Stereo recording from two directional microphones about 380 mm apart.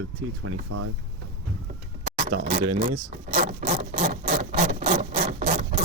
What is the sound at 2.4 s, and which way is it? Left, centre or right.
Wood, centre.